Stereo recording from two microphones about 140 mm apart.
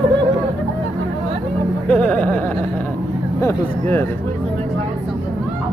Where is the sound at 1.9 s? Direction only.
10° left (ahead or behind).